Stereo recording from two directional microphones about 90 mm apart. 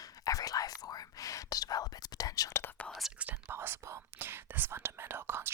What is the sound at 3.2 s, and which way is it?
Whispering, 20° right (ahead or behind).